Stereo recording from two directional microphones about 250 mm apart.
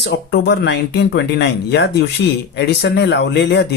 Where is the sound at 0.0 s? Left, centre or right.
Left.